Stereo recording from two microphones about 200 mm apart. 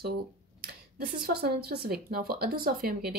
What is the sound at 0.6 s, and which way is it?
Speech, 50° right (ahead or behind).